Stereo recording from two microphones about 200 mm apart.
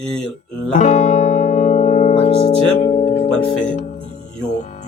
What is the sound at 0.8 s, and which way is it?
Music, 35° left (ahead or behind).